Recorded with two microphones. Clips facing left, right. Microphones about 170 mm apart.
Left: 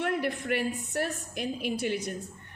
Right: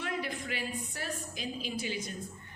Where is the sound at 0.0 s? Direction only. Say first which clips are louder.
Left 7 dB; 60° left (ahead or behind).